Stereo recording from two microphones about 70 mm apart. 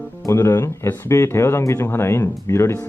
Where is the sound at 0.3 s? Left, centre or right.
Left.